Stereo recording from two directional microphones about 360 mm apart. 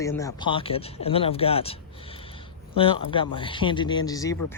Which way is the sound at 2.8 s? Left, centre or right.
Centre.